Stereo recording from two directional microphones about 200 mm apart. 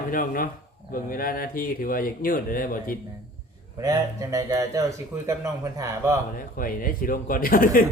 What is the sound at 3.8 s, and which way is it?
Speech, 15° right (ahead or behind).